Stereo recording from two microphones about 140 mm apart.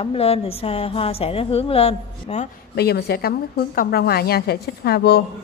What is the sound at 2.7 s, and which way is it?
A woman's voice, 90° left.